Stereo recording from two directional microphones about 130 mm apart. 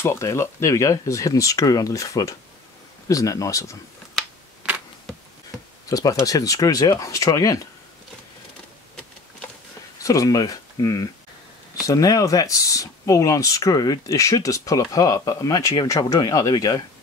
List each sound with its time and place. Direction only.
0.0 s speech: 20° left (ahead or behind)
5.9 s speech: 25° left (ahead or behind)
10.0 s speech: 25° left (ahead or behind)